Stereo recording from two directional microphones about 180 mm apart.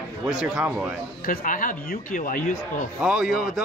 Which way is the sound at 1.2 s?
50° left (ahead or behind).